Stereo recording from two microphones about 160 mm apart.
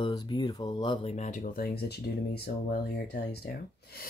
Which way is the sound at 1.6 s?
85° left.